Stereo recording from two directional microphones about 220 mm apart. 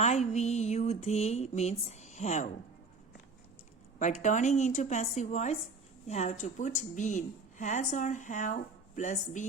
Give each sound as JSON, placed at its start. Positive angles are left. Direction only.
{"t": 0.0, "sound": "a woman's voice", "side_deg": 30}
{"t": 3.9, "sound": "a woman's voice", "side_deg": 35}